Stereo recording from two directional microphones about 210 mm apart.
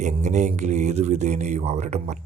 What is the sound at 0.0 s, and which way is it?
Speech, 35° right (ahead or behind).